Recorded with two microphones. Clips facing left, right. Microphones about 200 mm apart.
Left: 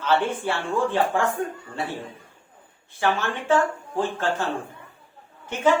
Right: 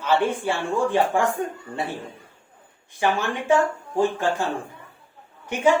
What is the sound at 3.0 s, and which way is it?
Speech, 15° right (ahead or behind).